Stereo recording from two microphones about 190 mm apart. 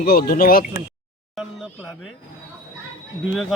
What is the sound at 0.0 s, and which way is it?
Speech, 50° left (ahead or behind).